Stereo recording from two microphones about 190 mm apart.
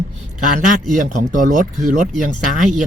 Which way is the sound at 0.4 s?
45° right (ahead or behind).